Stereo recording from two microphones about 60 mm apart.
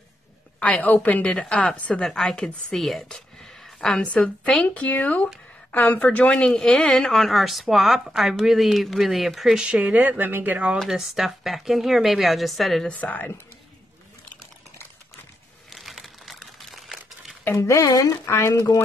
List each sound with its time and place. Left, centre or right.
0.6 s a woman's voice: left
1.2 s a woman's voice: centre
2.8 s speech: centre
4.0 s a woman's voice: left; by 9.6 s centre
9.6 s speech: right
10.8 s speech: centre
12.8 s a woman's voice: left
15.7 s crumpling: centre
17.6 s speech: left